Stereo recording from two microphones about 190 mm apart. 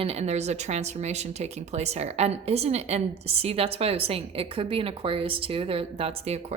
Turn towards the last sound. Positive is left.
turn(degrees=-35)  # may be behind; listen again after turning